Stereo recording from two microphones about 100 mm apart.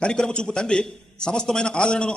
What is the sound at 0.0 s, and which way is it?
A man's voice, 10° left (ahead or behind).